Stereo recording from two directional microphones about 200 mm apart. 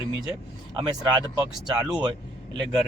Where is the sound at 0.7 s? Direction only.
20° right (ahead or behind).